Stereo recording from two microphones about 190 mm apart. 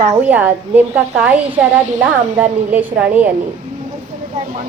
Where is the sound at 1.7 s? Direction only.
40° right (ahead or behind).